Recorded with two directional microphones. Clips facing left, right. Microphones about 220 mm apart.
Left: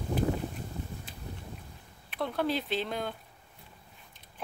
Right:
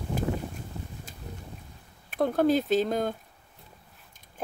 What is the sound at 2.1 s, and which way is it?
Speech, 45° right (ahead or behind).